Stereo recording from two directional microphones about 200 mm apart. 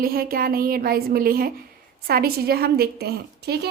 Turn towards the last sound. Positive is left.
turn(degrees=-55)  # may be behind; listen again after turning